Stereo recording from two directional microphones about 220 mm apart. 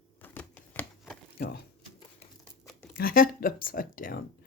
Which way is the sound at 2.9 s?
40° left (ahead or behind).